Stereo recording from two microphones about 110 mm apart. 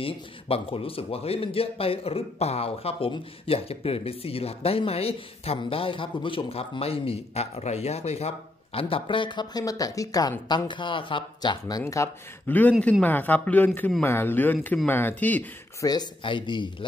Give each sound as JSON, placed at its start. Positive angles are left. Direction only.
{"t": 0.0, "sound": "a man's voice", "side_deg": 60}
{"t": 10.7, "sound": "speech", "side_deg": 50}
{"t": 11.8, "sound": "speech", "side_deg": 30}
{"t": 12.4, "sound": "speech", "side_deg": 15}
{"t": 15.8, "sound": "speech", "side_deg": 35}